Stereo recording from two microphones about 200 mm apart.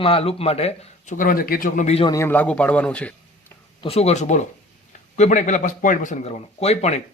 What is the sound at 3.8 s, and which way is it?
Speech, 30° left (ahead or behind).